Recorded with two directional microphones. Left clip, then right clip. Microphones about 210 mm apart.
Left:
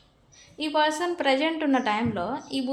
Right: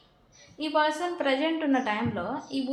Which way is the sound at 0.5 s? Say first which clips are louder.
Left 2 dB; 45° left (ahead or behind).